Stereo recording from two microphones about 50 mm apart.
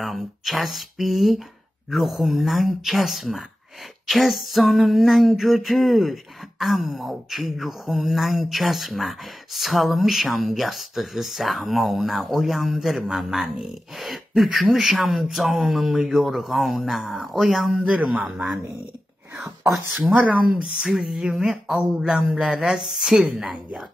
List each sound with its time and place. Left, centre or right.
0.0 s speech: centre
17.8 s a man's voice: right
18.3 s speech: centre
19.7 s speech: centre